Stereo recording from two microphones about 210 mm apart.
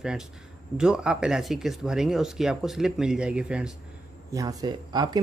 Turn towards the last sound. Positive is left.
turn(degrees=-20)  # may be behind; listen again after turning